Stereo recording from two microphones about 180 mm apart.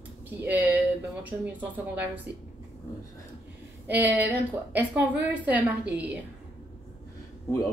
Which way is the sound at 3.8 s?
10° right (ahead or behind).